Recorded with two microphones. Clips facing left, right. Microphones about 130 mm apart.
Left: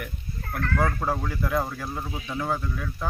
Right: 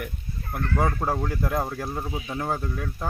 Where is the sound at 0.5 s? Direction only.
20° right (ahead or behind).